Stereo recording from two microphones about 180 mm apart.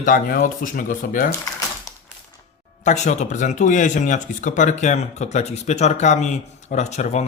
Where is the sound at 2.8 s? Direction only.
40° left (ahead or behind).